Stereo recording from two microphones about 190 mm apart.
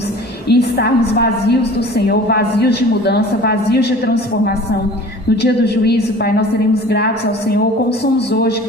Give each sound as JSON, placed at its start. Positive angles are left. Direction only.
{"t": 0.4, "sound": "a woman's voice", "side_deg": 55}
{"t": 8.3, "sound": "a woman's voice", "side_deg": 60}